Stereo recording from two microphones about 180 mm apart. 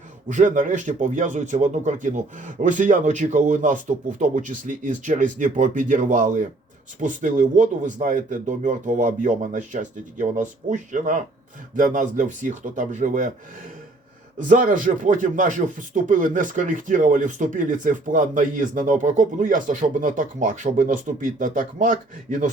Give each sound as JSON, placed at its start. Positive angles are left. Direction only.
{"t": 0.3, "sound": "speech", "side_deg": -45}
{"t": 14.3, "sound": "speech", "side_deg": -45}